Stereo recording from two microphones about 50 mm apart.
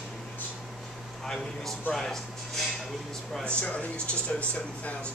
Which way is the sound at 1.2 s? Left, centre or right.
Centre.